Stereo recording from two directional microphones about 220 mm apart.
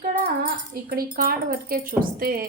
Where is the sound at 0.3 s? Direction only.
40° right (ahead or behind).